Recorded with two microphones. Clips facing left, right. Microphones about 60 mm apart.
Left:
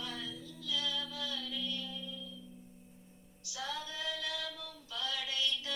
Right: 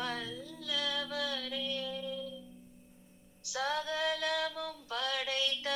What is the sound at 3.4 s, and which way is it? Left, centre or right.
Female singing, right.